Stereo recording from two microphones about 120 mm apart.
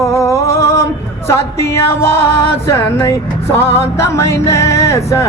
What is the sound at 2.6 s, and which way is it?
Music, 25° left (ahead or behind).